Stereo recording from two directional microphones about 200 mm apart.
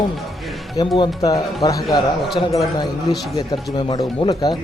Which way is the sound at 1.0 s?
20° left (ahead or behind).